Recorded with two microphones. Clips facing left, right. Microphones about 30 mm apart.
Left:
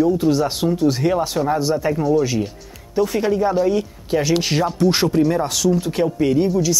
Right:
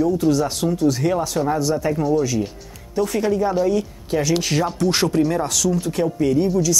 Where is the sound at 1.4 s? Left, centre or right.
Centre.